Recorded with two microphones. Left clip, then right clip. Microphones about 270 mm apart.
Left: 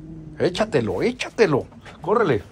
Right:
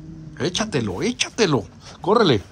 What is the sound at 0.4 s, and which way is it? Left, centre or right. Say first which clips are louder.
Speech: left 3 dB; centre.